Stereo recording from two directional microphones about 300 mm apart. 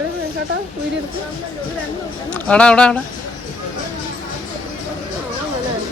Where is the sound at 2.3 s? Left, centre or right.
Centre.